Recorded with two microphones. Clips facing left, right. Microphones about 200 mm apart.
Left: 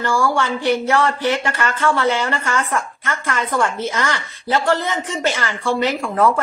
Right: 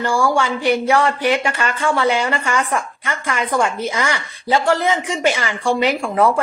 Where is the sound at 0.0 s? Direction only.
15° right (ahead or behind).